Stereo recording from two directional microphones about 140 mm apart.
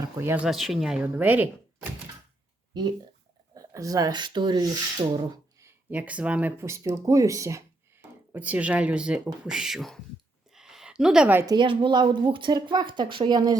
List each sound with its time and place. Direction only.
0.0 s speech: 15° right (ahead or behind)
0.4 s speech: centre (ahead or behind)
3.5 s speech: 25° right (ahead or behind)
5.9 s speech: 10° right (ahead or behind)
8.3 s speech: 10° right (ahead or behind)
10.5 s a sound: 5° right (ahead or behind)
11.4 s speech: 35° right (ahead or behind)